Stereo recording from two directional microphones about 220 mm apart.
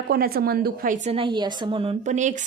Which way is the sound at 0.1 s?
45° right (ahead or behind).